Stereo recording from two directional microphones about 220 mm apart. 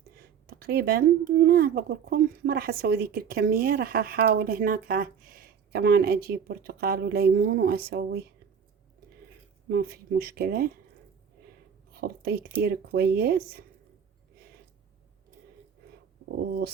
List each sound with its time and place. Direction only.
0.4 s speech: 45° right (ahead or behind)
9.6 s speech: 45° right (ahead or behind)
11.9 s speech: 45° right (ahead or behind)